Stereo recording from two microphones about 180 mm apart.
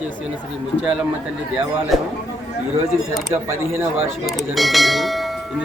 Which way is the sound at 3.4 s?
15° right (ahead or behind).